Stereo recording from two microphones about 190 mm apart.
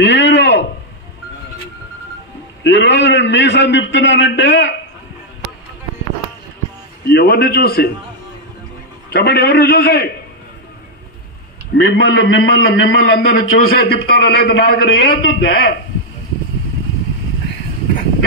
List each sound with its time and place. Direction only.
0.0 s a sound: 65° left (ahead or behind)
2.6 s a man's voice: 65° left (ahead or behind)
7.1 s a man's voice: 60° left (ahead or behind)
9.1 s a man's voice: 60° left (ahead or behind)
11.7 s a man's voice: 60° left (ahead or behind)